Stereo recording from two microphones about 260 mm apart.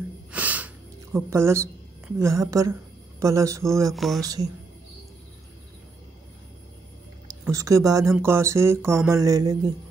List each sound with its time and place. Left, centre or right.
0.3 s snort: centre
1.1 s speech: centre
3.9 s speech: centre
4.2 s speech: centre
7.4 s speech: centre